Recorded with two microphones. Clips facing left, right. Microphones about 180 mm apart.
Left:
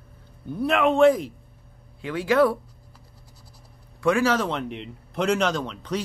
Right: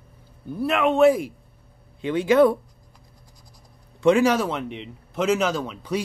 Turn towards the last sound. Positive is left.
turn(degrees=-10)  # may be behind; listen again after turning